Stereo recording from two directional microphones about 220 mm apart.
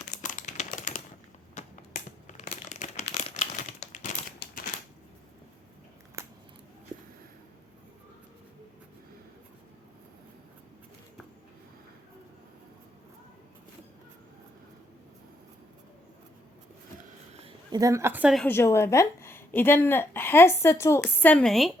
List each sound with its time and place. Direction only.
0.1 s crumpling: 35° left (ahead or behind)
1.6 s finger snapping: 30° left (ahead or behind)
2.2 s crumpling: 35° left (ahead or behind)
4.4 s a sound: 40° left (ahead or behind)
6.2 s scissors: 10° right (ahead or behind)
17.3 s a sound: 20° right (ahead or behind); by 18.4 s 5° right (ahead or behind)
18.4 s a woman's voice: 10° left (ahead or behind)